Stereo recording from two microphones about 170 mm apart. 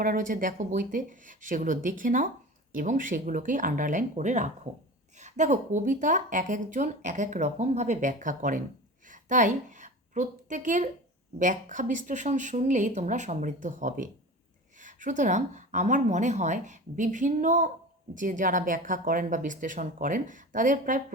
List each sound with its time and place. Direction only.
0.0 s speech: 55° right (ahead or behind)
9.0 s a sound: 50° right (ahead or behind)
11.3 s speech: 50° right (ahead or behind)